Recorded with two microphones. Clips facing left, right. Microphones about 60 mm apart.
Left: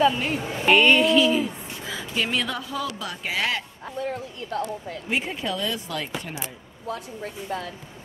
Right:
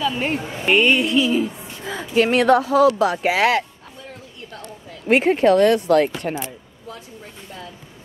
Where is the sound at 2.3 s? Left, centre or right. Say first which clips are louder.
Right 13 dB; right.